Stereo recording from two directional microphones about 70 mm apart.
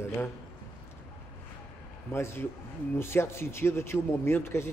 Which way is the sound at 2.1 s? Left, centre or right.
Left.